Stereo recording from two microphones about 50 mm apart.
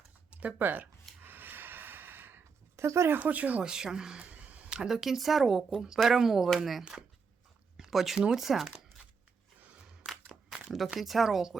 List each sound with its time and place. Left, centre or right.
0.3 s a sound: right
0.6 s speech: right
1.2 s snort: right
2.7 s speech: right
3.2 s speech: right
3.6 s speech: centre
4.8 s speech: centre
6.9 s speech: centre
7.9 s speech: centre
10.2 s crumpling: centre
10.9 s speech: centre